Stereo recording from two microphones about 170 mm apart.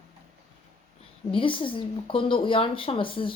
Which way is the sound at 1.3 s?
30° left (ahead or behind).